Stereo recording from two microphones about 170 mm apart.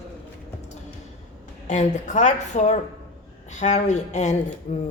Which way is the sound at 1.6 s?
45° left (ahead or behind).